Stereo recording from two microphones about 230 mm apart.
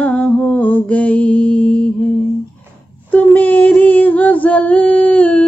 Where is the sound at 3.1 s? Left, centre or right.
Centre.